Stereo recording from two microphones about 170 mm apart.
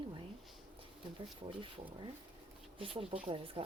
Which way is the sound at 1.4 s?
30° right (ahead or behind).